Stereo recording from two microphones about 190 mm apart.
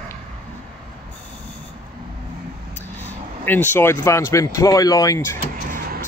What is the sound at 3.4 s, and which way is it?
Speech, 10° left (ahead or behind).